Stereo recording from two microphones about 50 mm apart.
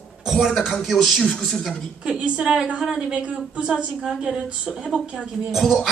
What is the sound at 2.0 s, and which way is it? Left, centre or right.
A woman's voice, right.